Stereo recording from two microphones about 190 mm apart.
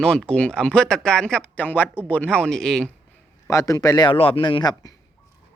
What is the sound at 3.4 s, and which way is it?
A man's voice, 15° left (ahead or behind).